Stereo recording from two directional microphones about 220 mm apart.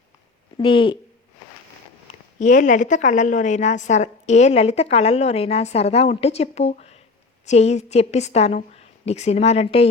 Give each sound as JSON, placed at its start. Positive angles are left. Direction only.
{"t": 0.5, "sound": "speech", "side_deg": 20}
{"t": 2.0, "sound": "a woman's voice", "side_deg": 35}